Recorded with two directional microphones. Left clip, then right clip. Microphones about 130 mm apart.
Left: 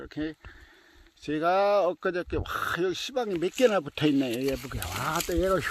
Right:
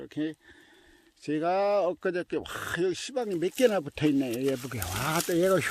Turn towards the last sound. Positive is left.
turn(degrees=-30)  # may be behind; listen again after turning